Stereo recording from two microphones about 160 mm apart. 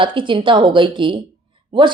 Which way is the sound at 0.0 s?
30° right (ahead or behind).